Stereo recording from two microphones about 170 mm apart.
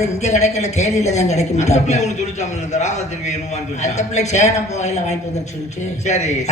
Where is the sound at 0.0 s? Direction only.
40° left (ahead or behind).